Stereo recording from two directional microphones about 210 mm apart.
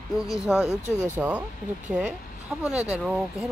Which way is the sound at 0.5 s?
Centre (ahead or behind).